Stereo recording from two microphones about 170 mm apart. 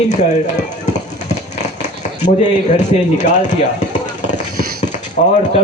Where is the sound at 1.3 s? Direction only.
45° left (ahead or behind).